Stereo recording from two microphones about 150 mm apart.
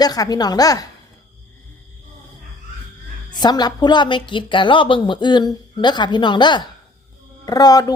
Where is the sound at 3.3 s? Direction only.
30° left (ahead or behind).